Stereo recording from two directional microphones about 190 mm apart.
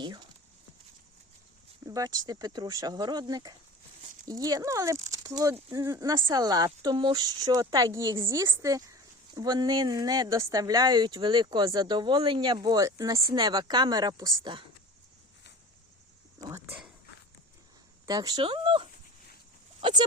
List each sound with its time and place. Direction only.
0.0 s speech: 20° right (ahead or behind)
1.9 s speech: 20° right (ahead or behind)
18.0 s speech: 20° right (ahead or behind)